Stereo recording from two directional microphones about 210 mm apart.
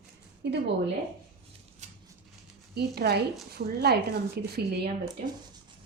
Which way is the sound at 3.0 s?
50° right (ahead or behind).